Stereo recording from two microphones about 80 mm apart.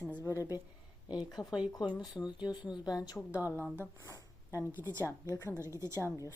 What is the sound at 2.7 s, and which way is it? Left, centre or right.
Speech, left.